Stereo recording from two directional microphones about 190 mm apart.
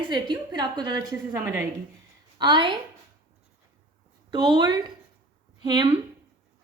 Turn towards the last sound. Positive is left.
turn(degrees=-20)  # may be behind; listen again after turning